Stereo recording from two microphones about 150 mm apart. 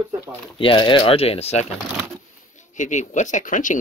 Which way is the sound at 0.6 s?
35° left (ahead or behind).